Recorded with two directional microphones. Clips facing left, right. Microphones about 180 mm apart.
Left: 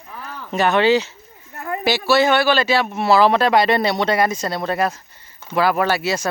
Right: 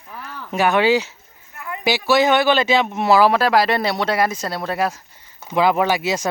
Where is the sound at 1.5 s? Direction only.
40° left (ahead or behind).